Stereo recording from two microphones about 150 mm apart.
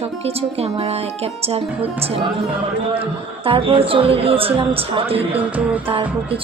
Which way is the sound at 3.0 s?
35° right (ahead or behind).